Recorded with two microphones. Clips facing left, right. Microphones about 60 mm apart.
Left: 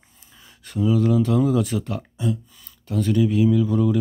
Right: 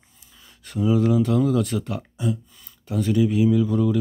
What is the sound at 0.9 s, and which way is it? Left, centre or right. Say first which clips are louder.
Speech: even; centre.